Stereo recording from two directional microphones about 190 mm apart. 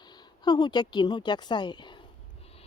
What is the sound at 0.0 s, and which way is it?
Speech, 20° left (ahead or behind).